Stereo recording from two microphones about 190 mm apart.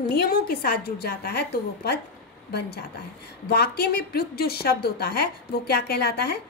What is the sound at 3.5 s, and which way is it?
A woman's voice, 55° left (ahead or behind).